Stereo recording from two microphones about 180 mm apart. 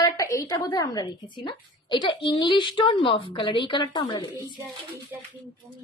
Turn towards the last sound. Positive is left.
turn(degrees=20)  # may be behind; listen again after turning